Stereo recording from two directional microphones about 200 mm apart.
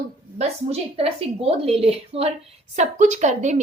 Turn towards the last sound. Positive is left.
turn(degrees=-35)  # may be behind; listen again after turning